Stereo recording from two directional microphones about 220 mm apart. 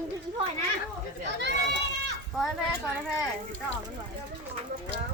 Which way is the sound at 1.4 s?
50° right (ahead or behind).